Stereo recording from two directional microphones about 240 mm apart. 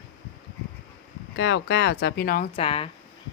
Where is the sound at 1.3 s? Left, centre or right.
Left.